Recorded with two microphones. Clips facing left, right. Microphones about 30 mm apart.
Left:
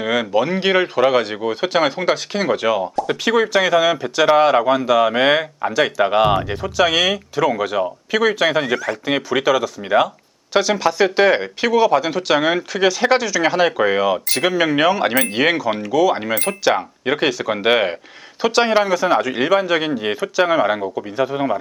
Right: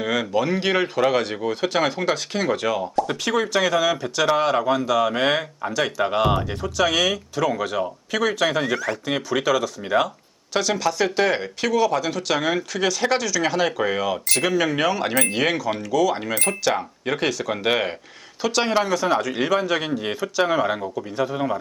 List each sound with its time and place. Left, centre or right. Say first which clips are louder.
0.0 s speech: left 4 dB; centre
2.9 s speech: left 2 dB; centre
3.2 s speech: left 7 dB; centre
4.3 s speech: left 6 dB; left; by 9.0 s centre
9.0 s speech: left 5 dB; centre